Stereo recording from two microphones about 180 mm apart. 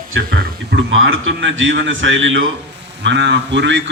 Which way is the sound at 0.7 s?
90° right.